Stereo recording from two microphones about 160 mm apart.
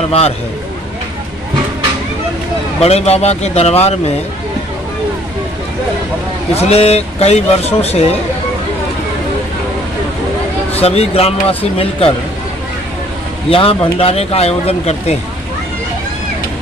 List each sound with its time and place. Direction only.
2.8 s a man's voice: 40° left (ahead or behind)
6.5 s a man's voice: 40° left (ahead or behind)
10.8 s a man's voice: 40° left (ahead or behind)
13.5 s a man's voice: 35° left (ahead or behind)